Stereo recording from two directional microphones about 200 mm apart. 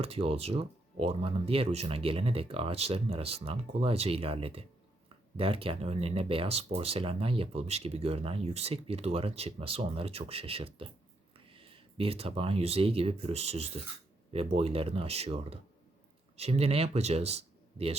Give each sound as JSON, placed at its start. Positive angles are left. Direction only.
{"t": 0.0, "sound": "speech", "side_deg": -30}